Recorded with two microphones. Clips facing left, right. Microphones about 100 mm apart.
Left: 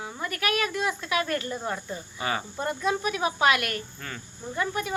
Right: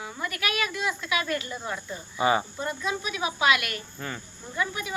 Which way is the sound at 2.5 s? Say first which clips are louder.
Left 3 dB; 50° left (ahead or behind).